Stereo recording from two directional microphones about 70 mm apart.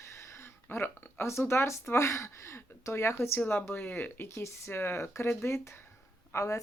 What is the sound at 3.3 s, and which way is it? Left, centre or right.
Speech, left.